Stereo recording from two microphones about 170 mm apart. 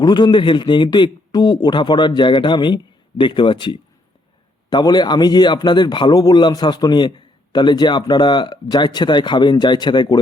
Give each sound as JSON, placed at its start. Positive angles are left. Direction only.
{"t": 0.0, "sound": "speech", "side_deg": 25}